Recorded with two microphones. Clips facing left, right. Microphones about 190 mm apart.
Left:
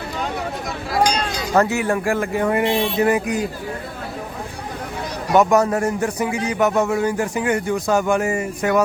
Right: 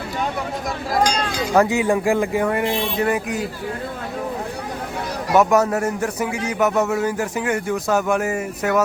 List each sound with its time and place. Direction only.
1.5 s speech: 15° right (ahead or behind)
2.5 s a man's voice: 5° left (ahead or behind)
5.3 s a man's voice: 5° right (ahead or behind)